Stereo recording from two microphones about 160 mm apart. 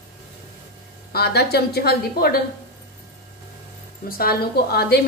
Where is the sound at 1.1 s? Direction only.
85° left.